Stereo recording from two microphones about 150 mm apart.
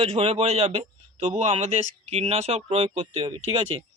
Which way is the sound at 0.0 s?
40° right (ahead or behind).